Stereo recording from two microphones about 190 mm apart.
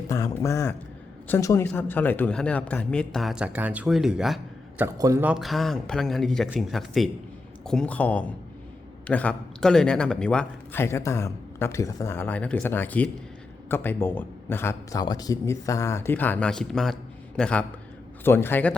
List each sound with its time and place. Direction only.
0.1 s a man's voice: 15° left (ahead or behind); by 4.4 s centre (ahead or behind)
4.9 s a man's voice: 15° right (ahead or behind)
5.3 s a man's voice: centre (ahead or behind)